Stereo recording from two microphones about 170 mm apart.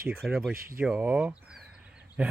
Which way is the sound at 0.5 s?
60° right (ahead or behind).